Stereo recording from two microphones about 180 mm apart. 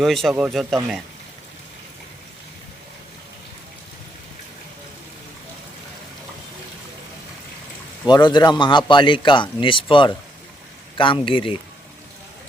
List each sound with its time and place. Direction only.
0.0 s speech: centre (ahead or behind)
8.0 s a man's voice: 25° left (ahead or behind)